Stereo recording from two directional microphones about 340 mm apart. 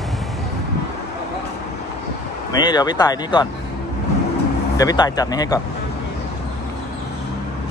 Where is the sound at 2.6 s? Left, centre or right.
Centre.